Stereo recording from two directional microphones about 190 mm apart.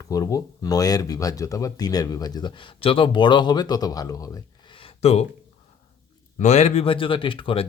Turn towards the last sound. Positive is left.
turn(degrees=30)  # may be behind; listen again after turning